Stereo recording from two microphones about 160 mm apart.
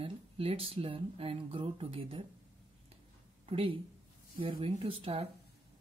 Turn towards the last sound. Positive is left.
turn(degrees=-35)  # may be behind; listen again after turning